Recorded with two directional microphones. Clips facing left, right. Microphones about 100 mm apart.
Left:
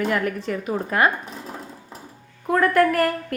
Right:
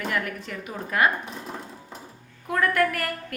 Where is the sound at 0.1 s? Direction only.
35° left (ahead or behind).